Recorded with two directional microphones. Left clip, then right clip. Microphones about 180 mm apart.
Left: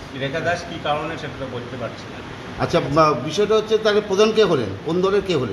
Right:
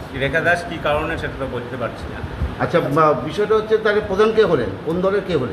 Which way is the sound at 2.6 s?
55° left (ahead or behind).